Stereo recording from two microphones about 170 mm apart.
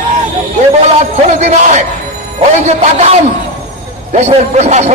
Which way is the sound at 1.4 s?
40° right (ahead or behind).